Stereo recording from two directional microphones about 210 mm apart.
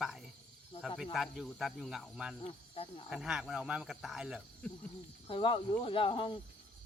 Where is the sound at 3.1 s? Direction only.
5° right (ahead or behind).